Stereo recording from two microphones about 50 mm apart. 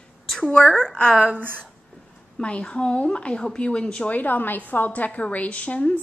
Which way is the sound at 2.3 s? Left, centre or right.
Left.